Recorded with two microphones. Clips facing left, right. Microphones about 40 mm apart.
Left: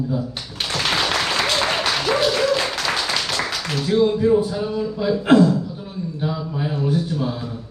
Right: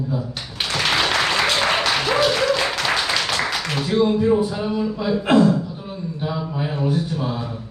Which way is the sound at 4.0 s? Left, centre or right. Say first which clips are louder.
Left 1 dB; centre.